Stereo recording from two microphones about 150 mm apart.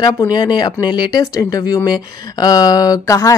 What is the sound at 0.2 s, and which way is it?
Speech, 25° left (ahead or behind).